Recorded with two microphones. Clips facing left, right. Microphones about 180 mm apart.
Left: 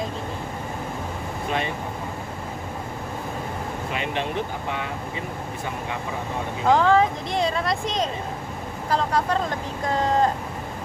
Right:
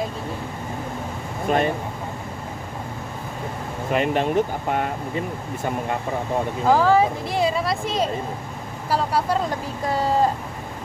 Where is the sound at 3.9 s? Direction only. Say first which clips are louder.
Right 9 dB; 45° right (ahead or behind).